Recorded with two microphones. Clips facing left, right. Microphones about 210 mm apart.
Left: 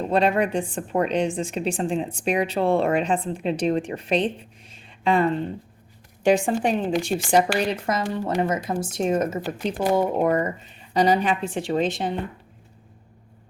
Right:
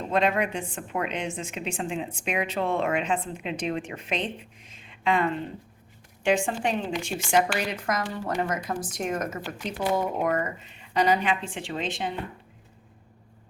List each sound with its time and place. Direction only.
0.1 s a woman's voice: 35° left (ahead or behind)